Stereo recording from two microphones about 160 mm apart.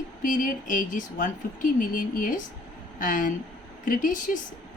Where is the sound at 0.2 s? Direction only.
55° left (ahead or behind).